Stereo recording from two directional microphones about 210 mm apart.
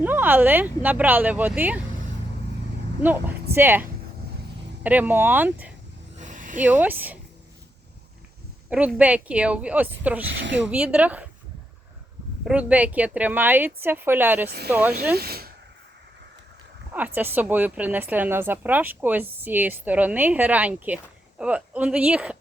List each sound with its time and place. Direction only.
0.0 s speech: 10° right (ahead or behind)
3.0 s speech: 10° right (ahead or behind)
6.1 s a sound: 35° right (ahead or behind)
6.6 s speech: 10° right (ahead or behind)
8.7 s speech: 5° right (ahead or behind)
10.2 s speech: 60° right (ahead or behind)
10.7 s speech: 5° right (ahead or behind)
12.5 s speech: 5° right (ahead or behind)
15.1 s speech: 50° right (ahead or behind)
16.9 s speech: 10° right (ahead or behind)